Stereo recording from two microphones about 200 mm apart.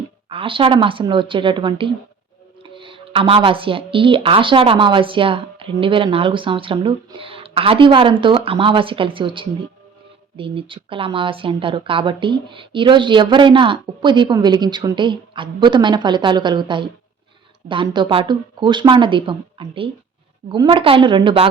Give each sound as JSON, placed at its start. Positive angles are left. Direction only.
{"t": 0.3, "sound": "speech", "side_deg": -25}